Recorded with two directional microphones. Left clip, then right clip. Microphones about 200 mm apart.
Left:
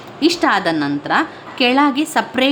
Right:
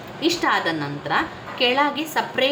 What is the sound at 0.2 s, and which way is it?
A woman's voice, 50° left (ahead or behind).